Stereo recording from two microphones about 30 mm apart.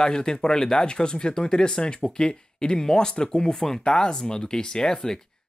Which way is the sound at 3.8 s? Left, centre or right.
Left.